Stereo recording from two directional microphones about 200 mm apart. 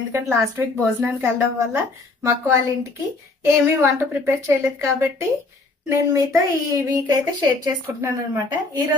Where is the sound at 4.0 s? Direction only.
10° right (ahead or behind).